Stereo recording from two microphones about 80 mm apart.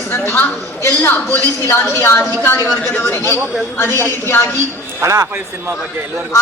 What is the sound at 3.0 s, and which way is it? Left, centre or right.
A woman's voice, left.